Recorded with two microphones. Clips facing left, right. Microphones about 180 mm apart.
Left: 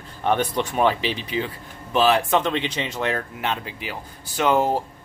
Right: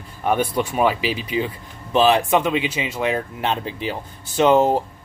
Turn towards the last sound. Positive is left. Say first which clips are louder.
# right 5 dB
turn(degrees=-20)  # may be behind; listen again after turning